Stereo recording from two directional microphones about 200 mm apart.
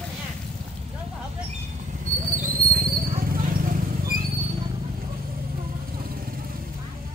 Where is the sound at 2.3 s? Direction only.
45° right (ahead or behind).